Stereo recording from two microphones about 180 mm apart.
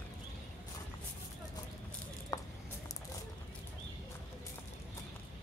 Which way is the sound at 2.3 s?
20° left (ahead or behind).